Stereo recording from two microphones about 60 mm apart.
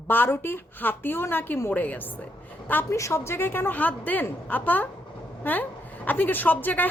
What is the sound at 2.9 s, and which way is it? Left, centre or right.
Speech, left.